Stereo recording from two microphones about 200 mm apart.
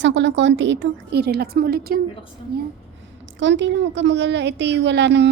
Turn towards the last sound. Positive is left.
turn(degrees=-60)  # may be behind; listen again after turning